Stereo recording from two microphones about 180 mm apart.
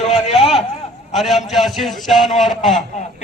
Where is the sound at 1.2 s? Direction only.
Centre (ahead or behind).